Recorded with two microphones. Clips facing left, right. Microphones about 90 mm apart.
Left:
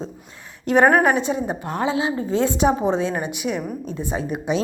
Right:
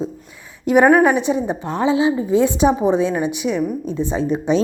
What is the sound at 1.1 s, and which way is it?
A woman's voice, 20° right (ahead or behind).